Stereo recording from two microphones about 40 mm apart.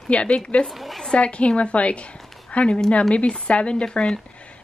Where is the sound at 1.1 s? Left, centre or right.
Left.